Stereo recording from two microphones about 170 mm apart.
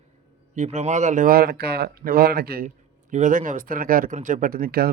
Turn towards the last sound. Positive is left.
turn(degrees=-65)  # may be behind; listen again after turning